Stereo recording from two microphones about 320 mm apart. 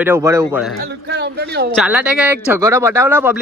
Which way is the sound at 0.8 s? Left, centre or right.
Right.